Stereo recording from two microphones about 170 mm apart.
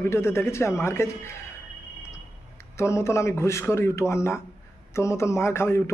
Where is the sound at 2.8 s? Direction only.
15° left (ahead or behind).